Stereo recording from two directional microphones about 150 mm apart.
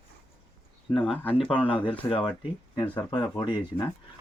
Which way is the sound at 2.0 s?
40° left (ahead or behind).